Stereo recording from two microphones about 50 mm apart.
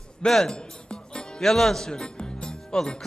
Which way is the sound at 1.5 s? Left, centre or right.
Centre.